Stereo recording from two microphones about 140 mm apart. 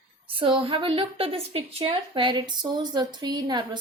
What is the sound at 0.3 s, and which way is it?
A woman's voice, 40° right (ahead or behind).